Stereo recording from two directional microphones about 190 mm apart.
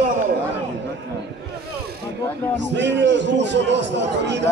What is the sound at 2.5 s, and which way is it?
A man's voice, 65° right (ahead or behind).